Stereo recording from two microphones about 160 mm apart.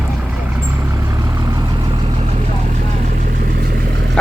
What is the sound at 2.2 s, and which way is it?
Vehicle, 45° right (ahead or behind).